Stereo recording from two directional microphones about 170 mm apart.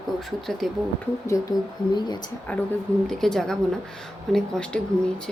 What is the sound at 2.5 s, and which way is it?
A woman's voice, 10° left (ahead or behind).